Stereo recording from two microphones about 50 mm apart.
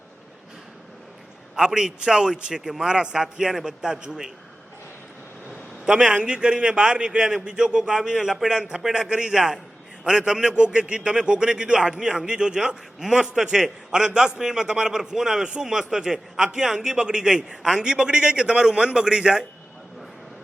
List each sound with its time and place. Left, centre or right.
1.5 s a man's voice: centre
5.5 s a man's voice: centre